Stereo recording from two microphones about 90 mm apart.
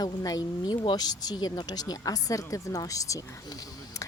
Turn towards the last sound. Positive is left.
turn(degrees=40)  # may be behind; listen again after turning